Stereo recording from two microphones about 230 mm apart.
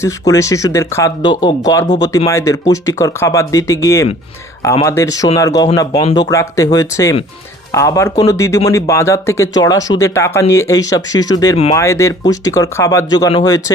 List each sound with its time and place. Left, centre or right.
0.0 s speech: centre